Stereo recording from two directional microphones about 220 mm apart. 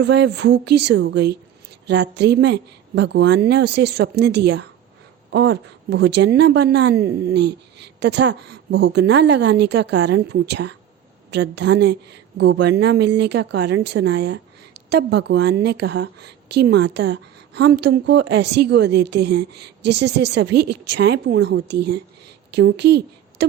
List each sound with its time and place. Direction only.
0.0 s a woman's voice: 50° right (ahead or behind)